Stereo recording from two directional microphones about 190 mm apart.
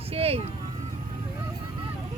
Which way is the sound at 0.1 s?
30° right (ahead or behind).